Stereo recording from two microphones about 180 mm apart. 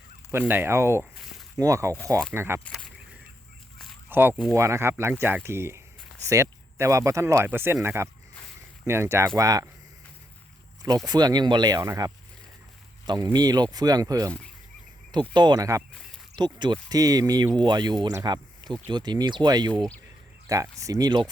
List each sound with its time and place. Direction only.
0.3 s speech: 10° right (ahead or behind)
2.6 s a sound: centre (ahead or behind)
4.1 s speech: 10° right (ahead or behind)
10.8 s speech: 20° right (ahead or behind)